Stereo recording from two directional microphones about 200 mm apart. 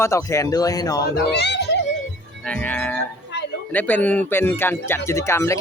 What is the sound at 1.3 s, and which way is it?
Speech, 60° left (ahead or behind).